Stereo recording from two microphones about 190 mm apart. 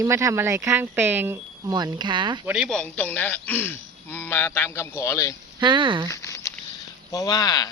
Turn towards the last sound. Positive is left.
turn(degrees=20)  # may be behind; listen again after turning